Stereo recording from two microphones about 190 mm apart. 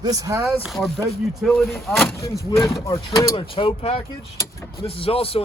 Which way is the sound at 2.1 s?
15° left (ahead or behind).